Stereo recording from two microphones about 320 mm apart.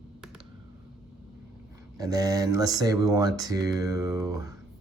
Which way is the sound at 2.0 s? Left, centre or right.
Centre.